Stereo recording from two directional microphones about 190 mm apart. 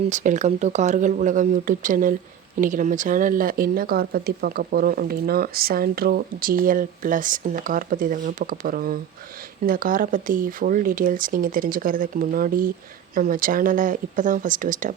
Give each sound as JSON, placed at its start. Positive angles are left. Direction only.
{"t": 0.1, "sound": "speech", "side_deg": -40}